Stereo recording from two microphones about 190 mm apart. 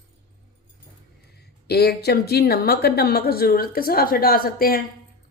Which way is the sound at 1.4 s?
55° left (ahead or behind).